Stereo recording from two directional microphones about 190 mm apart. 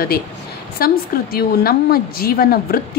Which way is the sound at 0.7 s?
55° left (ahead or behind).